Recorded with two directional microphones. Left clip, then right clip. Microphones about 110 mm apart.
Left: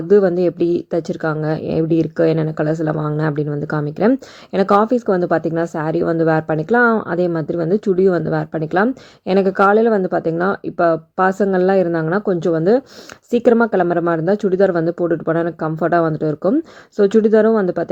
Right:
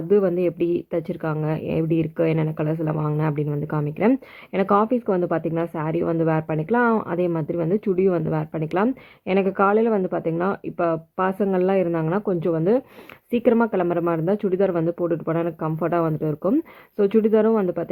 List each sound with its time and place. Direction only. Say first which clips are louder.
0.1 s a woman's voice: left 6 dB; 35° left (ahead or behind)